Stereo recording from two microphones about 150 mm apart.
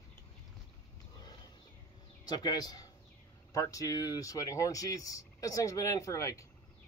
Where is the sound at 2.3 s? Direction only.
25° left (ahead or behind).